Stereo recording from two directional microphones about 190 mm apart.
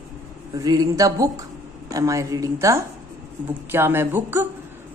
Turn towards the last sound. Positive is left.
turn(degrees=-10)  # may be behind; listen again after turning